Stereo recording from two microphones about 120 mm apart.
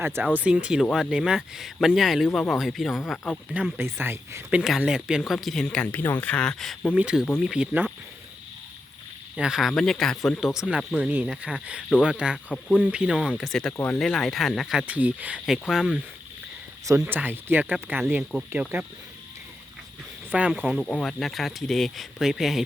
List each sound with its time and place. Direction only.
0.0 s speech: 20° right (ahead or behind); by 3.0 s centre (ahead or behind)
3.5 s speech: 10° right (ahead or behind)
4.5 s speech: 5° right (ahead or behind)
6.9 s speech: 10° right (ahead or behind)
9.3 s speech: 5° right (ahead or behind)
12.5 s speech: 10° left (ahead or behind)
12.8 s speech: 10° right (ahead or behind)
15.7 s speech: 5° right (ahead or behind)
17.1 s speech: 15° right (ahead or behind)
20.3 s speech: 10° right (ahead or behind)
20.7 s speech: 5° left (ahead or behind)